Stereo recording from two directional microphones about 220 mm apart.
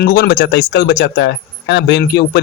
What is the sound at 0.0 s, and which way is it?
Speech, 45° left (ahead or behind).